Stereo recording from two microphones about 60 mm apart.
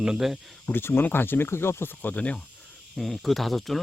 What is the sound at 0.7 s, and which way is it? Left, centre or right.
Speech, left.